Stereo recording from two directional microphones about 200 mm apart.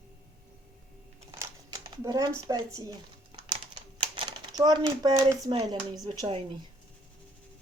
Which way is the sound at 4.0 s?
25° right (ahead or behind).